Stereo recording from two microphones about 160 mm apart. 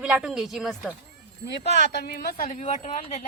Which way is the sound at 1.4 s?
90° left.